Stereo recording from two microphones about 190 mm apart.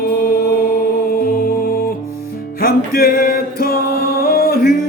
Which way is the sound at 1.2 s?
50° left (ahead or behind).